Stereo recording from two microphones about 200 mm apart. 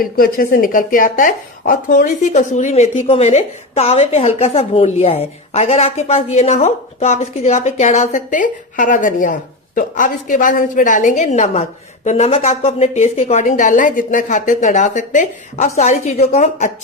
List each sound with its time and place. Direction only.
0.0 s a woman's voice: 45° left (ahead or behind)